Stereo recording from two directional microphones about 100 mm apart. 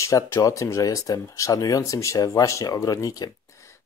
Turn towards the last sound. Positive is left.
turn(degrees=30)  # may be behind; listen again after turning